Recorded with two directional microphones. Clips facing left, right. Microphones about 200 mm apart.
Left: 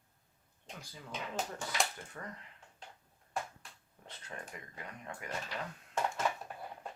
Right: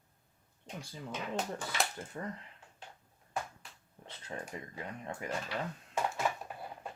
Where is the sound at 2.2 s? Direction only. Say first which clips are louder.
Right 6 dB; 25° right (ahead or behind).